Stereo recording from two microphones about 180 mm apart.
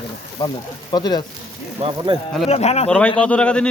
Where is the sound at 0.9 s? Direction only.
25° left (ahead or behind).